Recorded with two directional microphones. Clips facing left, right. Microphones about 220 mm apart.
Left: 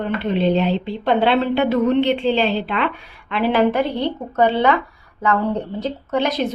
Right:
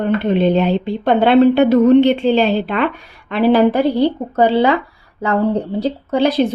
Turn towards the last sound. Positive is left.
turn(degrees=-30)  # may be behind; listen again after turning